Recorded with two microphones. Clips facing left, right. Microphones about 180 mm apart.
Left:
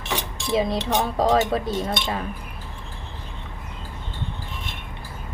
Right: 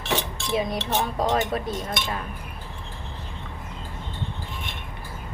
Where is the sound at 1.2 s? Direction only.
30° left (ahead or behind).